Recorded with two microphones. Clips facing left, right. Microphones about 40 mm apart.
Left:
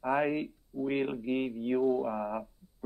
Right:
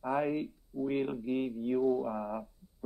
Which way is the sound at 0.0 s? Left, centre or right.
Left.